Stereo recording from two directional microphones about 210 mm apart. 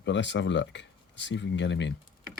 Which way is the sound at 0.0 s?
60° left (ahead or behind).